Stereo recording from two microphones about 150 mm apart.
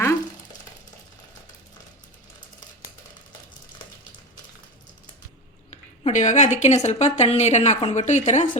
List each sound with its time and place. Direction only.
6.0 s speech: 50° left (ahead or behind)